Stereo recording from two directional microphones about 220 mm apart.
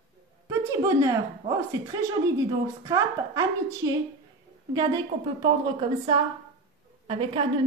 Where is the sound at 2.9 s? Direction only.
15° right (ahead or behind).